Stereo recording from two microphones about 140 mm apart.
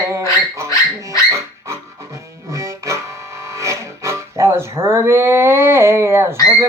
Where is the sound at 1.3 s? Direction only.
20° right (ahead or behind).